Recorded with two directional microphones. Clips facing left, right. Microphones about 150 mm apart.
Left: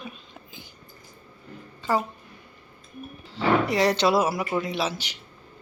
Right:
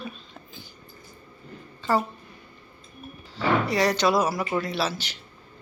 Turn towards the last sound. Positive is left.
turn(degrees=15)  # may be behind; listen again after turning